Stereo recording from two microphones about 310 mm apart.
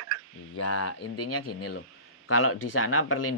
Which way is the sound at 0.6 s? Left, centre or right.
Left.